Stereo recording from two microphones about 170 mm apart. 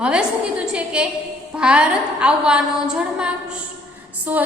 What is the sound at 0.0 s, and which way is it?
A woman's voice, 5° right (ahead or behind).